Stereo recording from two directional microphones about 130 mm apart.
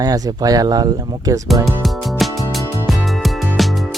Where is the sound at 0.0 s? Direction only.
30° right (ahead or behind).